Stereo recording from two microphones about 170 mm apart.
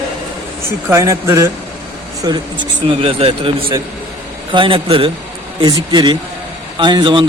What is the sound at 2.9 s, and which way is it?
A man's voice, 35° right (ahead or behind).